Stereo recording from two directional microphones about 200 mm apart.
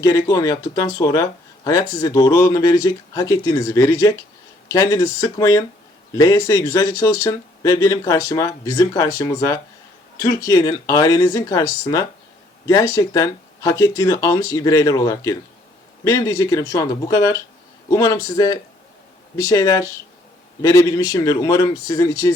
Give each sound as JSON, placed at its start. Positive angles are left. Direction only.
{"t": 0.0, "sound": "a man's voice", "side_deg": 15}